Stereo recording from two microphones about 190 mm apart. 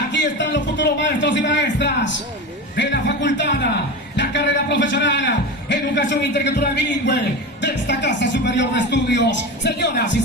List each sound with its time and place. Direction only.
0.1 s a man's voice: 70° left (ahead or behind)